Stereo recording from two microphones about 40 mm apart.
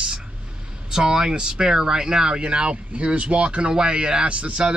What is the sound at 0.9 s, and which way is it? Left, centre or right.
Speech, centre.